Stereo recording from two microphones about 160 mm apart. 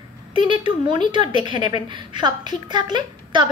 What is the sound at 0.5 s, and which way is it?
A woman's voice, 30° right (ahead or behind).